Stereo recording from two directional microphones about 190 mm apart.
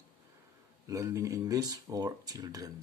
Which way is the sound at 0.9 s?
15° right (ahead or behind).